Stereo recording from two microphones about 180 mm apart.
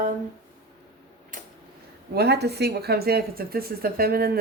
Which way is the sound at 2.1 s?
65° right (ahead or behind).